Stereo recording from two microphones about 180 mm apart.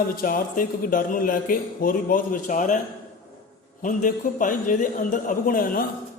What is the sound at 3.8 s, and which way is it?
A man's voice, 45° left (ahead or behind).